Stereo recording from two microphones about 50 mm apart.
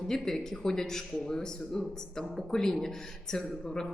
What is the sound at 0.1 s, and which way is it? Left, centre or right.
Speech, centre.